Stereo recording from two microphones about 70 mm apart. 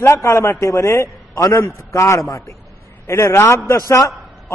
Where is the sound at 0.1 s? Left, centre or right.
Left.